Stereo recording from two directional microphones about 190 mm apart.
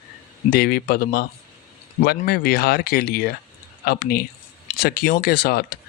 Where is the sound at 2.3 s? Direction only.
55° left (ahead or behind).